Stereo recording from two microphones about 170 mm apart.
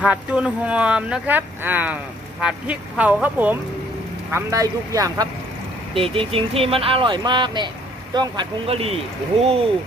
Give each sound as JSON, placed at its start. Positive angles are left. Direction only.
{"t": 0.0, "sound": "speech", "side_deg": -5}
{"t": 6.0, "sound": "speech", "side_deg": -35}